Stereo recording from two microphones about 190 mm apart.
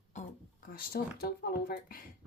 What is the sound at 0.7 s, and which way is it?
Speech, 50° left (ahead or behind).